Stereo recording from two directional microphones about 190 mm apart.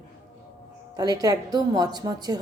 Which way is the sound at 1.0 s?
20° right (ahead or behind).